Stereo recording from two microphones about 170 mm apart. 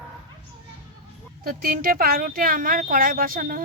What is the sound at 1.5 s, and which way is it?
Speech, 55° right (ahead or behind).